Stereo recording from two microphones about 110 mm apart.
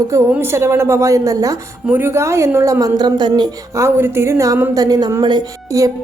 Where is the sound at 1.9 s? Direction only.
20° right (ahead or behind); by 3.5 s 40° right (ahead or behind).